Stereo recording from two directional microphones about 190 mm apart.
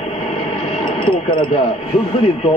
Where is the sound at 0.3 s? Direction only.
30° left (ahead or behind).